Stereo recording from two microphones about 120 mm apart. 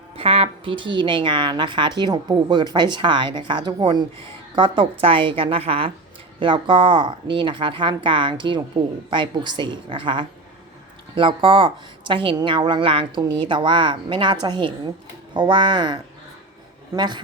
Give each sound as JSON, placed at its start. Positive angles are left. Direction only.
{"t": 0.2, "sound": "a woman's voice", "side_deg": -50}